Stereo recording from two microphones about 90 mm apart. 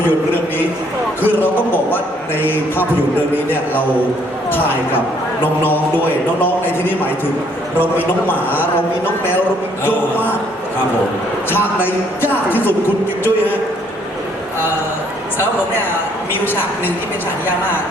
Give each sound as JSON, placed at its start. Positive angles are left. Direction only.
{"t": 1.4, "sound": "a man's voice", "side_deg": 20}
{"t": 4.5, "sound": "a man's voice", "side_deg": 20}
{"t": 11.9, "sound": "a man's voice", "side_deg": 20}
{"t": 16.5, "sound": "a man's voice", "side_deg": 20}